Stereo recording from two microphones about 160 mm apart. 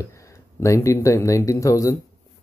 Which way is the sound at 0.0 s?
20° left (ahead or behind).